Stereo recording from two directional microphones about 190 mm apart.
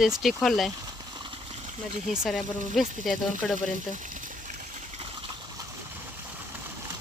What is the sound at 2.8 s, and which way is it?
Speech, centre (ahead or behind).